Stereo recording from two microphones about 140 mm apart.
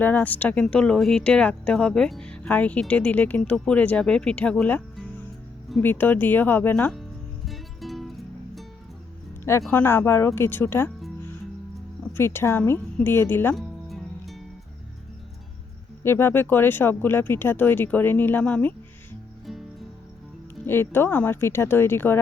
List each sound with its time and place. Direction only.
0.0 s speech: 10° left (ahead or behind)
7.4 s music: centre (ahead or behind)
9.4 s speech: 20° left (ahead or behind)
12.1 s speech: 15° left (ahead or behind)
13.6 s music: centre (ahead or behind)
16.0 s speech: 15° left (ahead or behind)
20.7 s speech: 15° left (ahead or behind)